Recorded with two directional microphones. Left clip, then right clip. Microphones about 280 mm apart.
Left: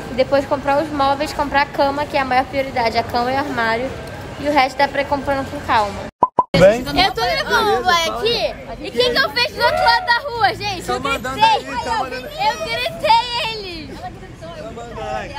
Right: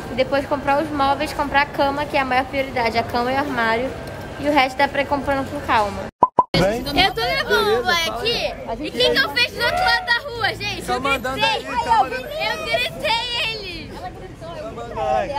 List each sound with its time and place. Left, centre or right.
0.1 s a woman's voice: centre
6.5 s speech: left
7.0 s a child's voice: centre
15.0 s speech: right